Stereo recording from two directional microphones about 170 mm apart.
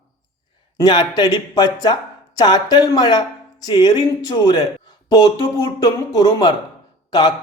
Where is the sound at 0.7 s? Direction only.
25° left (ahead or behind).